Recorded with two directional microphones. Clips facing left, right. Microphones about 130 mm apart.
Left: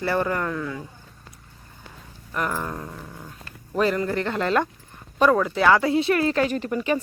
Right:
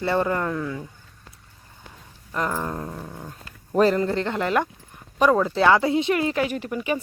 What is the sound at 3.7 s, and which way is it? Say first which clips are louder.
Speech: right 3 dB; 35° right (ahead or behind).